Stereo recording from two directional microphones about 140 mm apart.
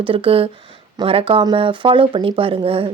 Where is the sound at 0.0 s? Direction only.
40° right (ahead or behind).